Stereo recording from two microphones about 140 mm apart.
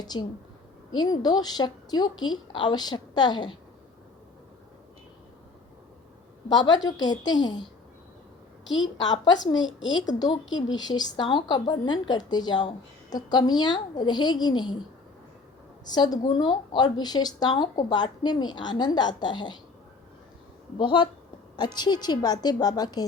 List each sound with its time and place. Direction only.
0.0 s a woman's voice: 30° left (ahead or behind)
6.5 s a woman's voice: 30° left (ahead or behind)
9.1 s a woman's voice: 30° left (ahead or behind)
15.9 s a woman's voice: 30° left (ahead or behind)
20.7 s a woman's voice: 35° left (ahead or behind)